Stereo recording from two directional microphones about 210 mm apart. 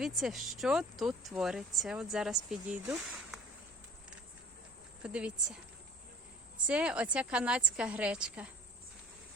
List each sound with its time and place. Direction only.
0.0 s speech: centre (ahead or behind)
5.0 s speech: 5° right (ahead or behind)
6.7 s speech: 5° right (ahead or behind)